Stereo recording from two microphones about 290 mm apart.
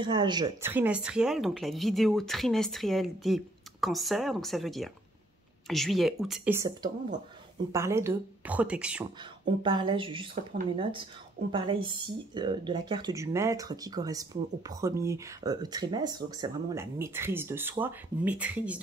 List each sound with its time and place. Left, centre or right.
0.0 s speech: centre
9.6 s speech: centre
10.3 s speech: right
11.5 s speech: centre